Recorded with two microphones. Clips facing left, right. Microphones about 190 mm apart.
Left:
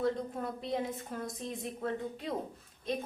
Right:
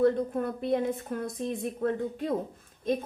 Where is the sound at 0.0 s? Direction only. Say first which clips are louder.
Right 8 dB; 55° right (ahead or behind).